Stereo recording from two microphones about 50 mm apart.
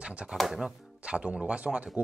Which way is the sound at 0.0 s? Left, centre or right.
Right.